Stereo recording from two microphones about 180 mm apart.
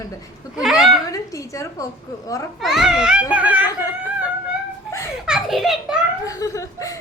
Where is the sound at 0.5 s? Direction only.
Centre (ahead or behind).